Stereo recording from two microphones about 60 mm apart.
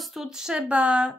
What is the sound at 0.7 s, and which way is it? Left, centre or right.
Speech, centre.